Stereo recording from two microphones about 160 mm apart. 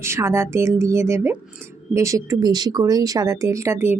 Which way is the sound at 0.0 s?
15° right (ahead or behind).